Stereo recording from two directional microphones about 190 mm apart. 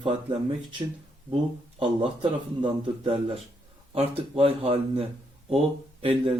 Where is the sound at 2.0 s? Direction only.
25° right (ahead or behind).